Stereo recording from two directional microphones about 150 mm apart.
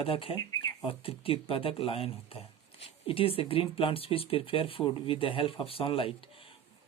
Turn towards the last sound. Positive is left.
turn(degrees=35)  # may be behind; listen again after turning